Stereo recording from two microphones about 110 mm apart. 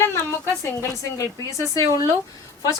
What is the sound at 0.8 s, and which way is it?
Speech, 30° left (ahead or behind).